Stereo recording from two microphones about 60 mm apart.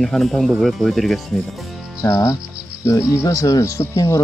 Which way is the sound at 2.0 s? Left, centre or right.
Left.